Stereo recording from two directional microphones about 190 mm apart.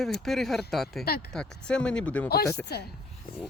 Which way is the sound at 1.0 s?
55° left (ahead or behind).